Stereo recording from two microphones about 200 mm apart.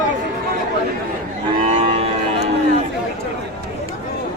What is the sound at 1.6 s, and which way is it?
Cattle, 35° right (ahead or behind).